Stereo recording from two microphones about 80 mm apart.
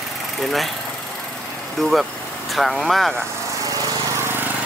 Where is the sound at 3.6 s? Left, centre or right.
Right.